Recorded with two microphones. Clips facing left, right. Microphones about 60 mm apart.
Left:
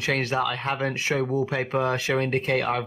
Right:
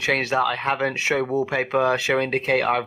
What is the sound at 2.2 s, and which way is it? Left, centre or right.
Speech, right.